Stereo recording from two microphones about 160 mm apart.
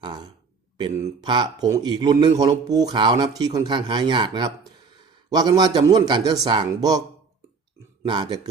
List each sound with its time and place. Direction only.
0.0 s speech: 25° right (ahead or behind)
8.0 s speech: 30° right (ahead or behind)